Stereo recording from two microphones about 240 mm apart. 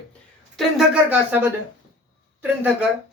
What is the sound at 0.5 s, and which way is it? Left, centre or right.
Speech, centre.